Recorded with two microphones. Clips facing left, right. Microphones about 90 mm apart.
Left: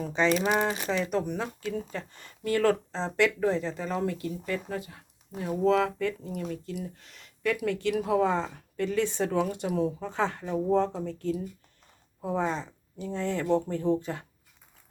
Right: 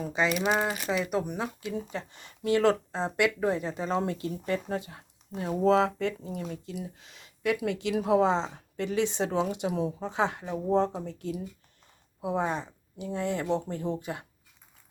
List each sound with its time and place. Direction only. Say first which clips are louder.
0.0 s speech: left 2 dB; 5° right (ahead or behind); by 5.0 s 30° right (ahead or behind)
5.4 s speech: right 1 dB; 20° right (ahead or behind)
5.6 s speech: right 1 dB; 30° right (ahead or behind); by 14.3 s 15° right (ahead or behind)